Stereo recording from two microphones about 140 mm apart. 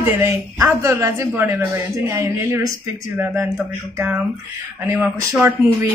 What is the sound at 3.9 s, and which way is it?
Speech, 20° right (ahead or behind).